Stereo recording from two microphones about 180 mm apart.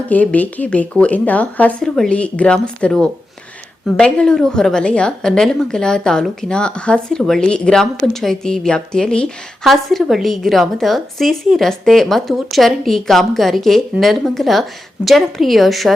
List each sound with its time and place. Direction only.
0.1 s a woman's voice: 10° left (ahead or behind)